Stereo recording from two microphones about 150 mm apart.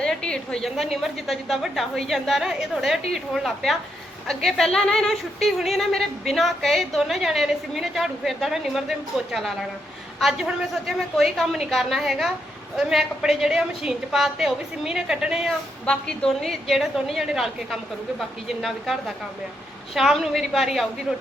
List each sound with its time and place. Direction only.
0.0 s a woman's voice: 5° left (ahead or behind)